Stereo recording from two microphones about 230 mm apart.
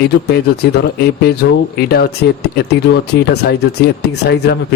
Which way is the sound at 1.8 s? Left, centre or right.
Left.